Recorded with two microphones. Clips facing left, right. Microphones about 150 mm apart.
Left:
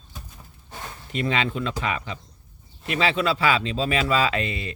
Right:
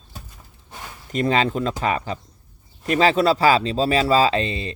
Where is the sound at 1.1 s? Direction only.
40° right (ahead or behind).